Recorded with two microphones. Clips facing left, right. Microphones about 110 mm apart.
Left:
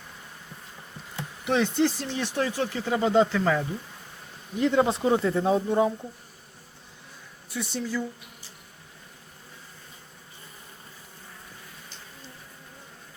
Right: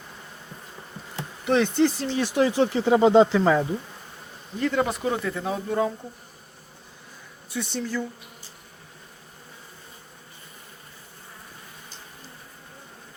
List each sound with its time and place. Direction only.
1.1 s speech: centre (ahead or behind); by 3.7 s 20° right (ahead or behind)
4.5 s speech: 20° left (ahead or behind)
7.5 s speech: 5° left (ahead or behind)